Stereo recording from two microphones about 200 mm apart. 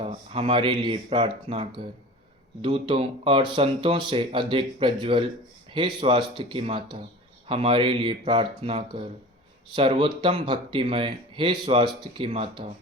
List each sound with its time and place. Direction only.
0.0 s speech: 30° right (ahead or behind)